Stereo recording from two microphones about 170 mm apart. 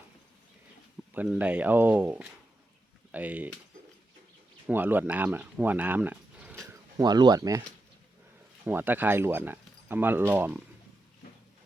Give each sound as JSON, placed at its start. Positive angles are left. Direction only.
{"t": 1.1, "sound": "speech", "side_deg": -10}
{"t": 4.6, "sound": "speech", "side_deg": -10}
{"t": 8.6, "sound": "speech", "side_deg": -10}